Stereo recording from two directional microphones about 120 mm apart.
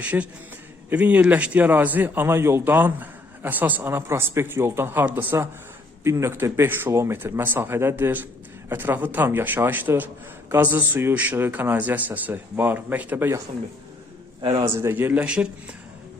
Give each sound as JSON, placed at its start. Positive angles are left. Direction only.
{"t": 0.0, "sound": "a man's voice", "side_deg": -10}
{"t": 14.8, "sound": "a man's voice", "side_deg": -20}